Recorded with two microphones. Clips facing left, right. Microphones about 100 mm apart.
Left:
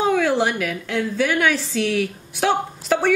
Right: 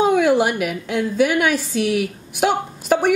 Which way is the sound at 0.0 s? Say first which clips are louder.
Right 3 dB; 15° right (ahead or behind).